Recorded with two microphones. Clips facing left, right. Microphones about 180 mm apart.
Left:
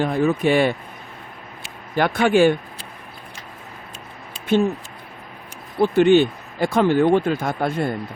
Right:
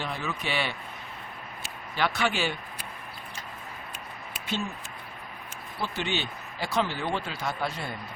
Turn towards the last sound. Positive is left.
turn(degrees=50)  # may be behind; listen again after turning